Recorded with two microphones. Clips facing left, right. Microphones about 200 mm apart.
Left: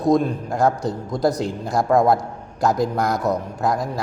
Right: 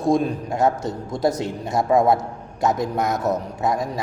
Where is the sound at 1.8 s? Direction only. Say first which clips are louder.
Even; 5° right (ahead or behind).